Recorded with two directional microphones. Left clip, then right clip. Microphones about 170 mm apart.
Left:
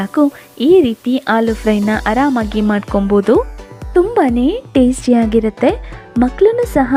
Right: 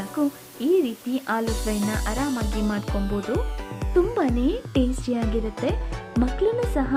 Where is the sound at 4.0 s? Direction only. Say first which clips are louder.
Left 10 dB; 45° left (ahead or behind).